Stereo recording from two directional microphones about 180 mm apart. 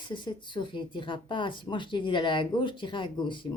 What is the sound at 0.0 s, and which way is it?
Speech, 25° left (ahead or behind).